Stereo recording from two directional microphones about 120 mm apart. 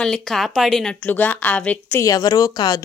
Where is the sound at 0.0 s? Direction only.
5° left (ahead or behind).